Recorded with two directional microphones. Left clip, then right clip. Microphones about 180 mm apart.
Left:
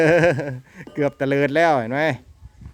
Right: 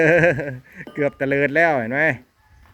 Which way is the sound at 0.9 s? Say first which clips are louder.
Even; 20° left (ahead or behind).